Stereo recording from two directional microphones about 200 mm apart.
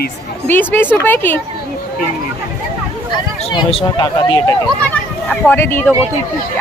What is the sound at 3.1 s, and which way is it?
Speech, 25° left (ahead or behind).